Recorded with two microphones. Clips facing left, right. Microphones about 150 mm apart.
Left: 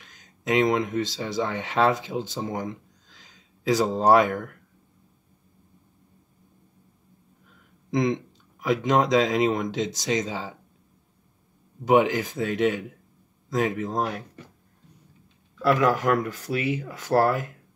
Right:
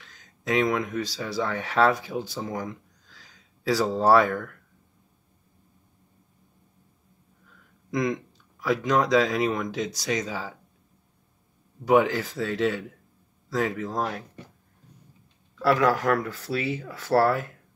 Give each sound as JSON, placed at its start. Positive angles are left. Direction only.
{"t": 0.0, "sound": "speech", "side_deg": 20}
{"t": 7.9, "sound": "speech", "side_deg": 25}
{"t": 11.8, "sound": "speech", "side_deg": 20}
{"t": 15.6, "sound": "speech", "side_deg": 20}